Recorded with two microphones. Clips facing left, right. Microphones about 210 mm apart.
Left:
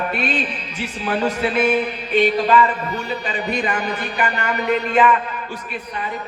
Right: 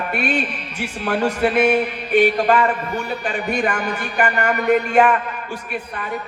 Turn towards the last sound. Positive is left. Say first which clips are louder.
# right 2 dB
turn(degrees=-50)  # may be behind; listen again after turning